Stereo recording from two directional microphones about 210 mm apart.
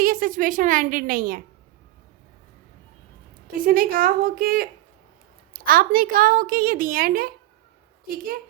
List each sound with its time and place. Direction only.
0.0 s a woman's voice: 40° right (ahead or behind)
3.6 s a woman's voice: 40° right (ahead or behind)